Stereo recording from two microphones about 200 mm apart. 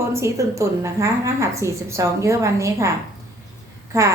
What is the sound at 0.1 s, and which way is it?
A woman's voice, 15° right (ahead or behind).